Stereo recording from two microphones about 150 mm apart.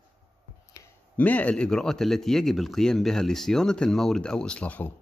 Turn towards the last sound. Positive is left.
turn(degrees=10)  # may be behind; listen again after turning